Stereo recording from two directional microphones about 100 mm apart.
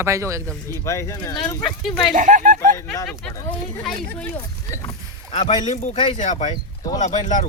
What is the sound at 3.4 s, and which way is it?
Speech, 10° left (ahead or behind).